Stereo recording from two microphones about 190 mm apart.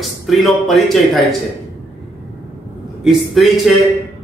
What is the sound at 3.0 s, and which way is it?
Speech, centre (ahead or behind).